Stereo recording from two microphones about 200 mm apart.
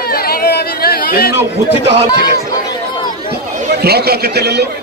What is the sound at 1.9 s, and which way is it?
Speech, 60° right (ahead or behind).